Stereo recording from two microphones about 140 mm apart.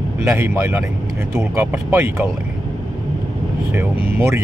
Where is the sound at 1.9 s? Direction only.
20° right (ahead or behind).